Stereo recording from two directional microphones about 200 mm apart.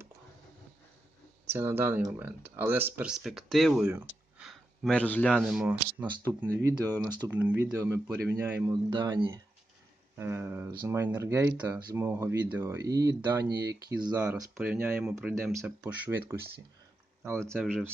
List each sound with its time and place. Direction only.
1.5 s speech: 10° right (ahead or behind)
17.4 s speech: 5° left (ahead or behind)
17.6 s speech: 10° right (ahead or behind)